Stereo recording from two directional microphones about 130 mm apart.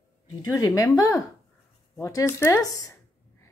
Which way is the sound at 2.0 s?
25° left (ahead or behind).